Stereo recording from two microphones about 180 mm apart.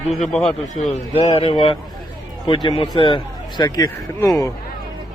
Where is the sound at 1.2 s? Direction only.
30° left (ahead or behind).